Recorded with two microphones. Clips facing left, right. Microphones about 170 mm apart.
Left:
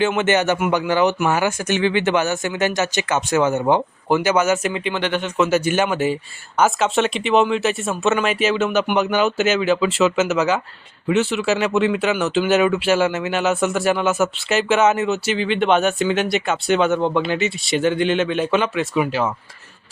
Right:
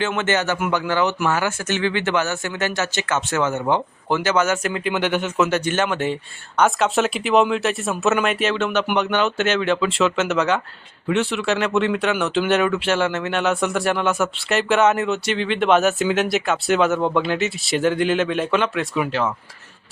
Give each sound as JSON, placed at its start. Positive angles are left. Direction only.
{"t": 0.0, "sound": "speech", "side_deg": 15}
{"t": 4.8, "sound": "speech", "side_deg": -5}
{"t": 5.5, "sound": "speech", "side_deg": 10}